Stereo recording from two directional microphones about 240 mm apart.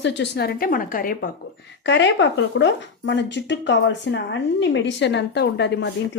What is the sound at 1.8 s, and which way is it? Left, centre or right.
A woman's voice, left.